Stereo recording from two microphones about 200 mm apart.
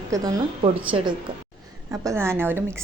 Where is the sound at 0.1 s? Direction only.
20° right (ahead or behind).